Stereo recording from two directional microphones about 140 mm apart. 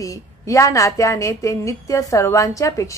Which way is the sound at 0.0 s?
25° left (ahead or behind).